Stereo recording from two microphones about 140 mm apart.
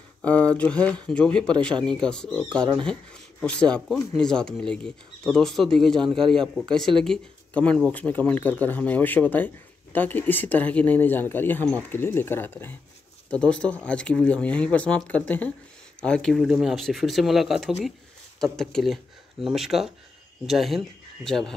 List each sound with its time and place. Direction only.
0.2 s speech: 10° left (ahead or behind)